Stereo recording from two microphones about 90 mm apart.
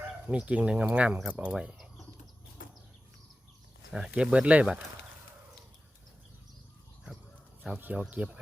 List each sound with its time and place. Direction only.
0.3 s speech: 15° right (ahead or behind)
3.9 s speech: 10° right (ahead or behind)
7.6 s speech: 20° right (ahead or behind)